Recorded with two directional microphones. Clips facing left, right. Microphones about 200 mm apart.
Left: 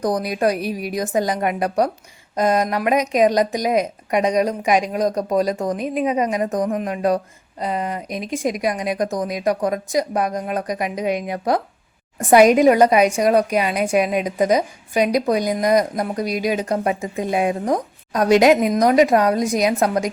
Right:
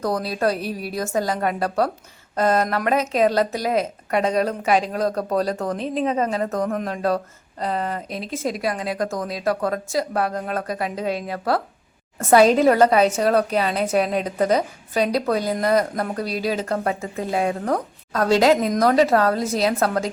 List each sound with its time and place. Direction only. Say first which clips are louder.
0.0 s speech: left 2 dB; 15° left (ahead or behind)